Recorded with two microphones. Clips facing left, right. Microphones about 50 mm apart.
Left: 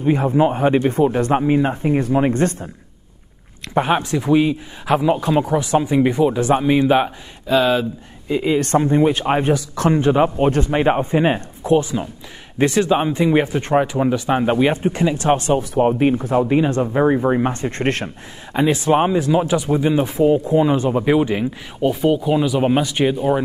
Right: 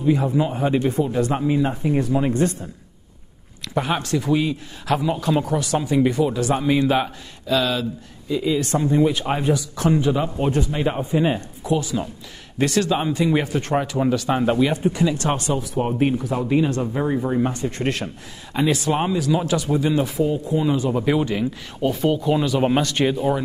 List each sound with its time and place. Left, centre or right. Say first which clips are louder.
0.0 s a man's voice: left 4 dB; left
2.3 s speech: left 2 dB; left
3.6 s a man's voice: left 5 dB; left
8.3 s a man's voice: left 4 dB; left
12.5 s a man's voice: left 4 dB; left
15.1 s a man's voice: left 6 dB; left
15.8 s a man's voice: left 4 dB; left
18.5 s a man's voice: left 4 dB; left
20.9 s speech: left 4 dB; left